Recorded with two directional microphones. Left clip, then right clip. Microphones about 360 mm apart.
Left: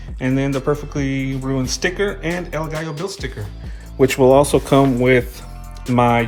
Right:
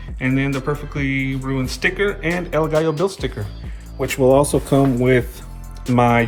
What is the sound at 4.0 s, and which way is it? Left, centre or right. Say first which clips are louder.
Speech: left 7 dB; left.